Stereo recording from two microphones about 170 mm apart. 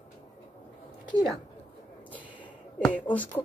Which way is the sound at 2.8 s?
10° left (ahead or behind).